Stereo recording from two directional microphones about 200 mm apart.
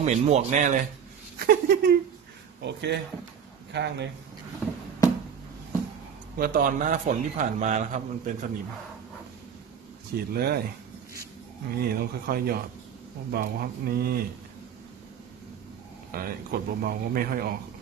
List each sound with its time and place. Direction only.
0.0 s a man's voice: 35° right (ahead or behind)
1.4 s speech: 50° right (ahead or behind)
2.6 s speech: 60° right (ahead or behind)
6.3 s a man's voice: 45° right (ahead or behind)
10.1 s speech: 50° right (ahead or behind)
11.7 s speech: 50° right (ahead or behind)
16.1 s speech: 45° right (ahead or behind)